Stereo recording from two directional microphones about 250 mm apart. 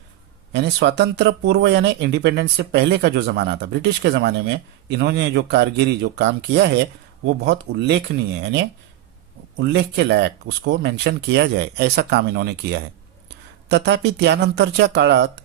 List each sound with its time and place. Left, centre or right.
0.5 s speech: right